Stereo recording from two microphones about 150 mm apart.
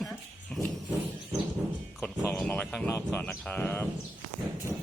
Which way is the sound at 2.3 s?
10° left (ahead or behind).